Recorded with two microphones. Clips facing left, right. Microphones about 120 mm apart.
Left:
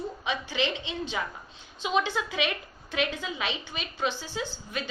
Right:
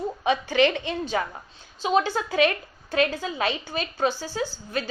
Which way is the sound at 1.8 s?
40° right (ahead or behind).